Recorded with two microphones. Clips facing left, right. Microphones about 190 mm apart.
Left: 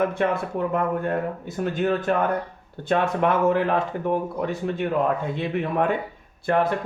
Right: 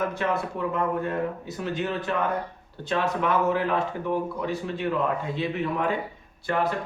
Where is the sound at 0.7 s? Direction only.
50° left (ahead or behind).